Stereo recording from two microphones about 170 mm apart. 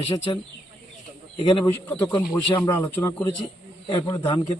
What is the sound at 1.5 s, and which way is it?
A man's voice, 25° left (ahead or behind).